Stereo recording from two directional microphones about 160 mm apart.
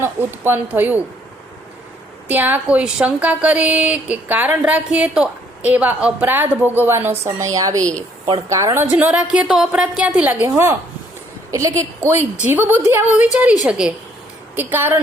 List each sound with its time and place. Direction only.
0.0 s a woman's voice: 15° right (ahead or behind)
2.2 s a woman's voice: 10° right (ahead or behind)